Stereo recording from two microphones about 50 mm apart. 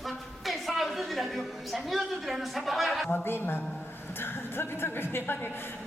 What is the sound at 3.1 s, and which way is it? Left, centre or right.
A woman's voice, left.